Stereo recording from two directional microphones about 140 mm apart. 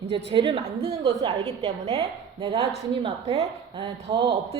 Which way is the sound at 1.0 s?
35° right (ahead or behind).